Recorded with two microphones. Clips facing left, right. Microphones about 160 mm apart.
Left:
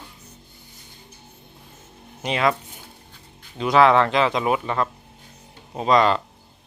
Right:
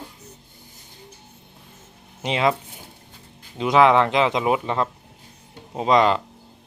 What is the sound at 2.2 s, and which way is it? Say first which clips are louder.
Speech: right 1 dB; 25° right (ahead or behind).